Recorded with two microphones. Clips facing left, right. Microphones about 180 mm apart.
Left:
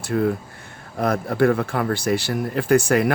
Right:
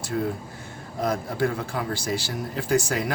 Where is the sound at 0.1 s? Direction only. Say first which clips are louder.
Left 6 dB; 60° left (ahead or behind).